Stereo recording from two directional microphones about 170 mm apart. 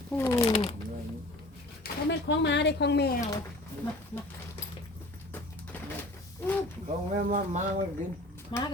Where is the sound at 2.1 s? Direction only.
90° left.